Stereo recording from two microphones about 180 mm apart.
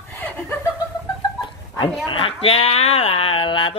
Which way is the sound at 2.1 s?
30° left (ahead or behind).